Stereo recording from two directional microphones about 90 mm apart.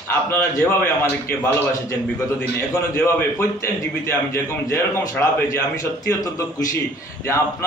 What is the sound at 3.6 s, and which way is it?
A man's voice, 30° left (ahead or behind).